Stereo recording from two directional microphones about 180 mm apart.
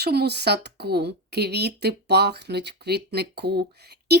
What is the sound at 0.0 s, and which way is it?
Speech, 60° right (ahead or behind).